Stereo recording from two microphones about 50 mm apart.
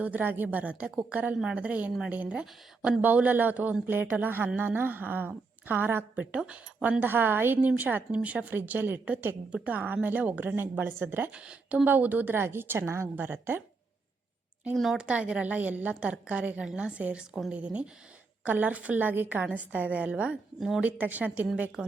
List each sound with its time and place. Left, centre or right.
0.0 s a man's voice: right
6.1 s a woman's voice: right
7.0 s a woman's voice: right
8.1 s a woman's voice: right
11.3 s a woman's voice: right
11.9 s a woman's voice: right
14.9 s a woman's voice: right
18.4 s a man's voice: right
20.6 s speech: centre
20.8 s a man's voice: right